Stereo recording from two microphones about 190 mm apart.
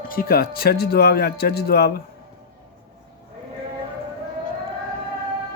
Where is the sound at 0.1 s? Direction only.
50° left (ahead or behind).